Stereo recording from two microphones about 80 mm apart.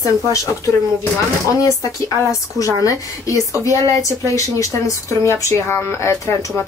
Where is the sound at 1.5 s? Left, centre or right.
Left.